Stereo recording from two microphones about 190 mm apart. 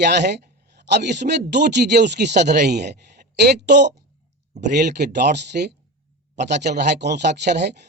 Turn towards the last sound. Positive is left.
turn(degrees=-60)  # may be behind; listen again after turning